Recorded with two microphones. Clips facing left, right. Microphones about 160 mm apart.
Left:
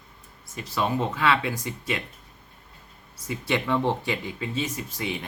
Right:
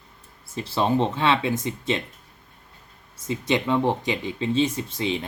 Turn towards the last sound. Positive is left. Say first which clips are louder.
# right 5 dB
turn(degrees=-25)  # may be behind; listen again after turning